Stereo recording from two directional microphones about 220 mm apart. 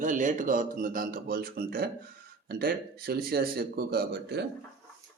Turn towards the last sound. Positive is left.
turn(degrees=-45)  # may be behind; listen again after turning